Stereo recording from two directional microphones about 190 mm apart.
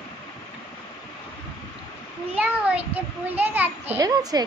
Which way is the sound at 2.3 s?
10° right (ahead or behind).